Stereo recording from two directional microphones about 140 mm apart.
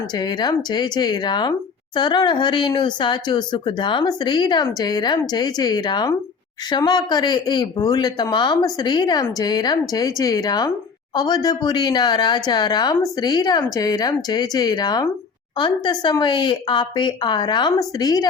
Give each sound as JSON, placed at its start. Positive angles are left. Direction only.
{"t": 0.1, "sound": "speech", "side_deg": 30}